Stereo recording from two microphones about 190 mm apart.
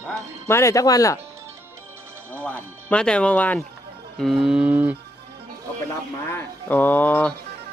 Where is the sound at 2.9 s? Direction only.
5° left (ahead or behind).